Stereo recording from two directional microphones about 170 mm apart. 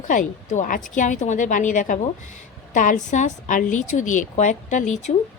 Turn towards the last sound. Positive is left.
turn(degrees=45)  # may be behind; listen again after turning